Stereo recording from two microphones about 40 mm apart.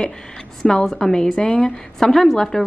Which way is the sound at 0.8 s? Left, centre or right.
Centre.